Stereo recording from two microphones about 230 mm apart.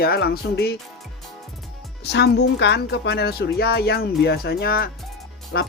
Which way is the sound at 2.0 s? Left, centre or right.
Left.